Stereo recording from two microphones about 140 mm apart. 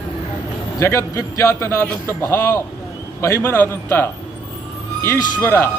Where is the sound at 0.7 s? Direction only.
20° left (ahead or behind).